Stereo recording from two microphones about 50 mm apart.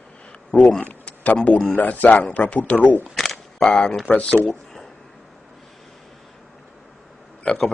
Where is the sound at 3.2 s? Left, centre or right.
Centre.